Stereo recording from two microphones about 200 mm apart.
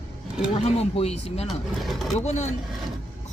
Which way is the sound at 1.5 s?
Centre (ahead or behind).